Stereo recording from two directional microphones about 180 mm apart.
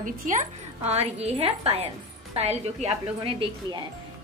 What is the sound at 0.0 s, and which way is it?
A woman's voice, 45° right (ahead or behind).